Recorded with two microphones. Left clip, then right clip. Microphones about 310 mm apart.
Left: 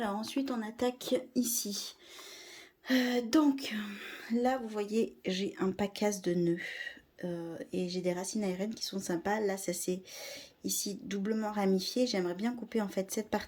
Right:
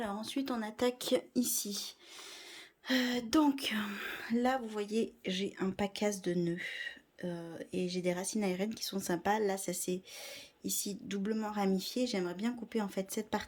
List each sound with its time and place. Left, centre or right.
0.0 s speech: centre